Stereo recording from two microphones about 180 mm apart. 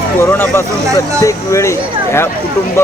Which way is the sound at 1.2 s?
15° left (ahead or behind).